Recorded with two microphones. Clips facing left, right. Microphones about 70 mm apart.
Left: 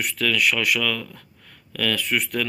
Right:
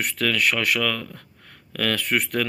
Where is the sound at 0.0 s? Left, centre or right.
Right.